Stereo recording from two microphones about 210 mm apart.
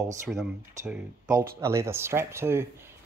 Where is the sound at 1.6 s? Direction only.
15° right (ahead or behind).